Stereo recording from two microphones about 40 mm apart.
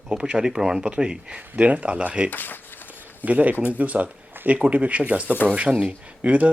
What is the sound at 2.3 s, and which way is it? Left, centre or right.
Speech, left.